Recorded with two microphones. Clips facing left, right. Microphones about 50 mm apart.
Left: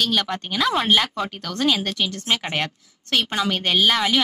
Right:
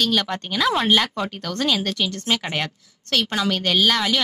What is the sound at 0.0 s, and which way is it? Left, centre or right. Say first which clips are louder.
Speech: right 1 dB; centre.